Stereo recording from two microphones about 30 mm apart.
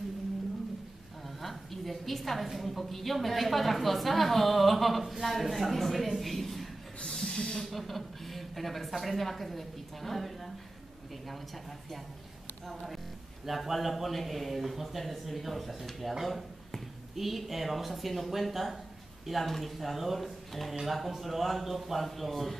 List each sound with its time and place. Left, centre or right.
1.4 s a woman's voice: centre
6.2 s a sound: centre
7.2 s hiss: left
7.5 s hiss: centre
7.8 s a woman's voice: centre
12.6 s music: centre
13.5 s a woman's voice: centre